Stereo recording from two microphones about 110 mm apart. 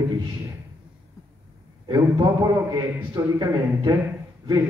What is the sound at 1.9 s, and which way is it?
A man's voice, 35° right (ahead or behind).